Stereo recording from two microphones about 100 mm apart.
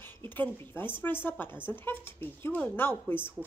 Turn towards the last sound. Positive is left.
turn(degrees=20)  # may be behind; listen again after turning